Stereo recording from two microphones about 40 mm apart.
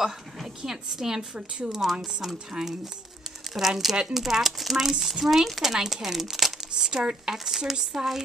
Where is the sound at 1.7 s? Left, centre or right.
Centre.